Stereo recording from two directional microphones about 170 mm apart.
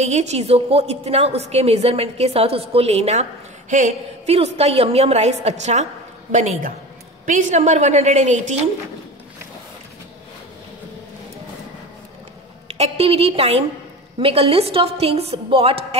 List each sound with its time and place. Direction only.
0.0 s a woman's voice: 40° right (ahead or behind)
12.6 s a woman's voice: 40° right (ahead or behind)